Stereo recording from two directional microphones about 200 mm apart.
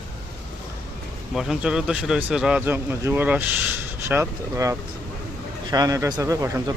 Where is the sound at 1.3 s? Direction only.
5° right (ahead or behind).